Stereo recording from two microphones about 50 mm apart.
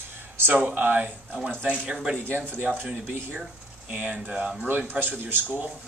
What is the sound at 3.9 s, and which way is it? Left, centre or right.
Speech, right.